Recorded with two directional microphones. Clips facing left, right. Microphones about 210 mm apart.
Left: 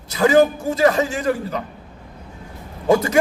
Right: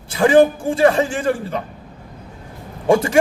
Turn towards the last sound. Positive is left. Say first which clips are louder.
# right 1 dB
turn(degrees=-30)  # may be behind; listen again after turning